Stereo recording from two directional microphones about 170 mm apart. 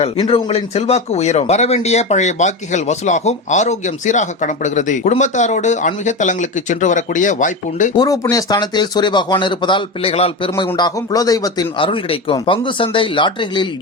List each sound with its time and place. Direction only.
0.0 s speech: 35° left (ahead or behind)
7.9 s speech: 20° left (ahead or behind)
10.8 s speech: 20° left (ahead or behind)